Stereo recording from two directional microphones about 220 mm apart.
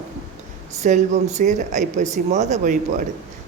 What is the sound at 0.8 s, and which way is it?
Speech, 30° right (ahead or behind).